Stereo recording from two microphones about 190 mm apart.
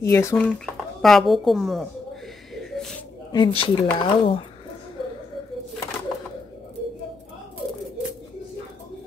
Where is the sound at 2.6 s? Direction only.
Centre (ahead or behind).